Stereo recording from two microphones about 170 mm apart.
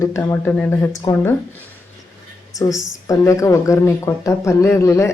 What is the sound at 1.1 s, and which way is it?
Speech, 25° left (ahead or behind).